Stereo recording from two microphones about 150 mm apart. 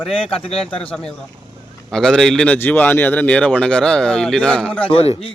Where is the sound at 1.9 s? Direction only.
5° left (ahead or behind).